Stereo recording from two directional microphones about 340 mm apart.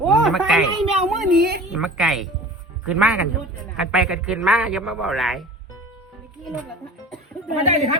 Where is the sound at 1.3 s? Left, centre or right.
Right.